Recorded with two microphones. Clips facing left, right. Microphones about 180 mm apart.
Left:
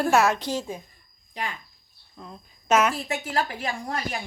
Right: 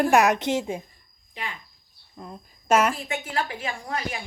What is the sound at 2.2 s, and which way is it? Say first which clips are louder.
Speech: right 2 dB; 10° right (ahead or behind).